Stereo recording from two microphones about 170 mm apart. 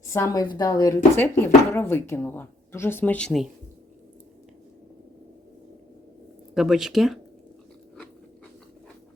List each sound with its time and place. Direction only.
0.1 s a woman's voice: 20° left (ahead or behind); by 3.5 s centre (ahead or behind)
6.5 s speech: centre (ahead or behind)